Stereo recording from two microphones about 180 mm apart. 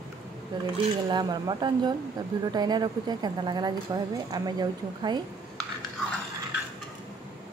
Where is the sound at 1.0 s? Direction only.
25° right (ahead or behind).